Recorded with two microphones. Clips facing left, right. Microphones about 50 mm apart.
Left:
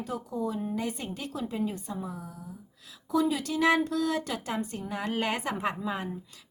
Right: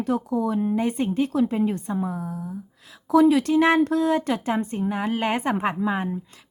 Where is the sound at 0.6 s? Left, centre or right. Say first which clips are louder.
Right 9 dB; right.